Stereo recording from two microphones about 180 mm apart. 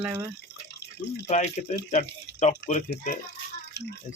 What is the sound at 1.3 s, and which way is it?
Speech, 40° left (ahead or behind).